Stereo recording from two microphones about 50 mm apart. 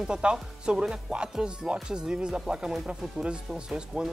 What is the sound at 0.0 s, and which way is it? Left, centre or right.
Speech, centre.